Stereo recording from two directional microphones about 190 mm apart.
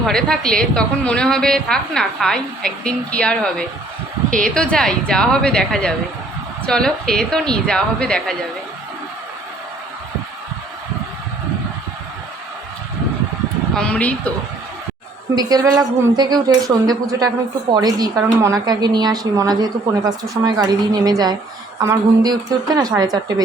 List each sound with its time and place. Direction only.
0.0 s a woman's voice: 5° left (ahead or behind)
13.7 s a woman's voice: 5° left (ahead or behind)
15.4 s a woman's voice: 20° right (ahead or behind)